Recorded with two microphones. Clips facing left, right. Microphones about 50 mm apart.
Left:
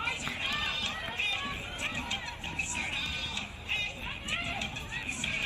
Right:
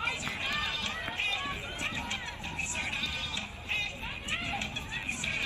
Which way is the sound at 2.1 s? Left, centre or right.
Right.